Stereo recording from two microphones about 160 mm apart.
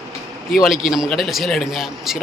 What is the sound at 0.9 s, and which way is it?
A man's voice, centre (ahead or behind).